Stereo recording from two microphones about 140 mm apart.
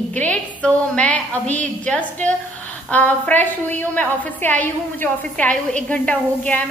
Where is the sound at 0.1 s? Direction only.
10° left (ahead or behind).